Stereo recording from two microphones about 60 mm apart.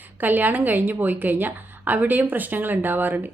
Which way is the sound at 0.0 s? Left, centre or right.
Right.